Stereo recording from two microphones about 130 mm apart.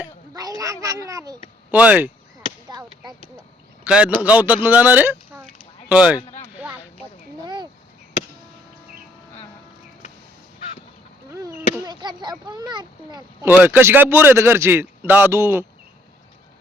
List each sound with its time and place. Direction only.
0.6 s speech: 25° right (ahead or behind)
1.7 s a man's voice: 10° right (ahead or behind)
2.6 s a sound: 30° right (ahead or behind)
3.8 s a man's voice: 5° right (ahead or behind)
7.4 s a sound: 35° right (ahead or behind)
11.3 s chop: 25° right (ahead or behind)
11.9 s a child's voice: 35° right (ahead or behind)
13.4 s a man's voice: 15° right (ahead or behind)